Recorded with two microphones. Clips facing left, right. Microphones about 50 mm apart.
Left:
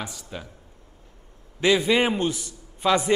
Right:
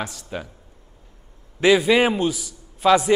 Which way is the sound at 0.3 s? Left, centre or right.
Right.